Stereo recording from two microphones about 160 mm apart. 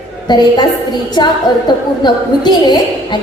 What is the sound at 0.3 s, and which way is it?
A woman's voice, 25° left (ahead or behind).